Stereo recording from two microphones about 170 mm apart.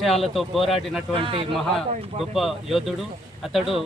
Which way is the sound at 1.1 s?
30° right (ahead or behind).